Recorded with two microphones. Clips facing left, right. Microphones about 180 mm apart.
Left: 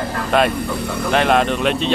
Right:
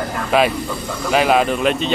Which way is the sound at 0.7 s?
65° left (ahead or behind).